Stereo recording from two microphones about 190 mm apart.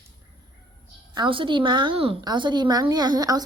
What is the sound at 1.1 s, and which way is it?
A woman's voice, 25° right (ahead or behind).